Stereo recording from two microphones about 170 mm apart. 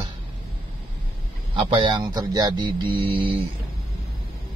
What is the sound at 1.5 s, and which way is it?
Speech, 30° right (ahead or behind).